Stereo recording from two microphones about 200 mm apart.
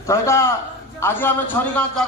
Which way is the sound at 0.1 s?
15° left (ahead or behind).